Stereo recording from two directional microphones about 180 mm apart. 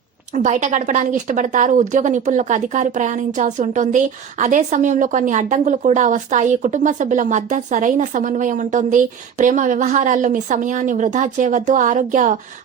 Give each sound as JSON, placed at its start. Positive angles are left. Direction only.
{"t": 0.3, "sound": "speech", "side_deg": -40}